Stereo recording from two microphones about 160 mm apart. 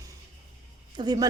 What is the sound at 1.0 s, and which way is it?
Speech, 30° right (ahead or behind).